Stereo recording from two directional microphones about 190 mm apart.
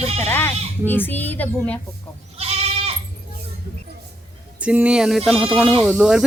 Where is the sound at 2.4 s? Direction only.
35° right (ahead or behind).